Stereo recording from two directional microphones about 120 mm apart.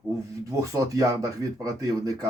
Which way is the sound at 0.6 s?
30° right (ahead or behind).